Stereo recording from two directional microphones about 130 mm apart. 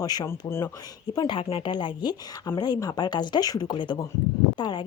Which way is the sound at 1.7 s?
35° left (ahead or behind).